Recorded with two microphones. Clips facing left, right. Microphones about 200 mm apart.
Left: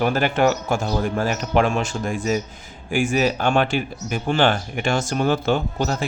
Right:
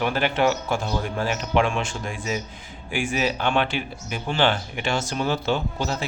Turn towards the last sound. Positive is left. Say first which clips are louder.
# left 4 dB
turn(degrees=50)  # may be behind; listen again after turning